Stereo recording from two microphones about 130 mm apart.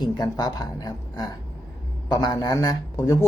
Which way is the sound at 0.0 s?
30° left (ahead or behind).